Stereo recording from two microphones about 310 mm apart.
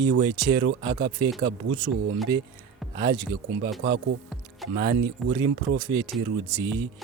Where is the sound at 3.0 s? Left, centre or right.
Centre.